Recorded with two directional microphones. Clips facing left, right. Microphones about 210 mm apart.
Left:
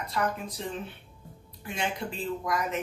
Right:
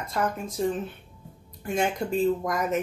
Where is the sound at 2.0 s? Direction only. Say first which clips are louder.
Right 9 dB; 45° right (ahead or behind).